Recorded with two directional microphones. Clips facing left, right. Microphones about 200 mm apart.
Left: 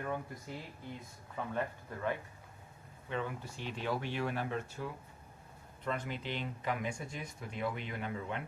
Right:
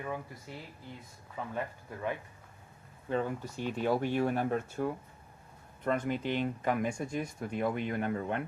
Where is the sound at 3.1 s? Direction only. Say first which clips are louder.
Right 6 dB; 45° right (ahead or behind).